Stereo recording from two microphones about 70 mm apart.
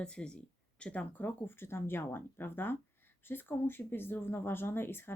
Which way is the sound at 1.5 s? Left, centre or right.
Left.